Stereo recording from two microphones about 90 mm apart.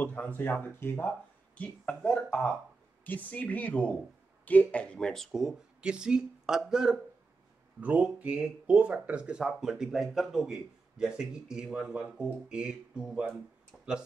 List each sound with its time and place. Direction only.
0.0 s a man's voice: 20° left (ahead or behind); by 13.4 s 5° right (ahead or behind)